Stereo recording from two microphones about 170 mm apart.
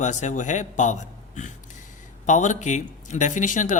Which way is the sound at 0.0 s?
45° left (ahead or behind).